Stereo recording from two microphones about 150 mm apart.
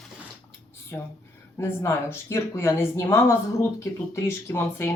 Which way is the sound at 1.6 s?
15° left (ahead or behind).